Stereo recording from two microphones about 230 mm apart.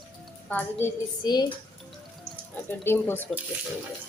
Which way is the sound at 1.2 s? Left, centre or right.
Centre.